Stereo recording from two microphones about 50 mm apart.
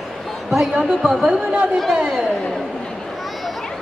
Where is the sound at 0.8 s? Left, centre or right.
Centre; by 1.8 s right.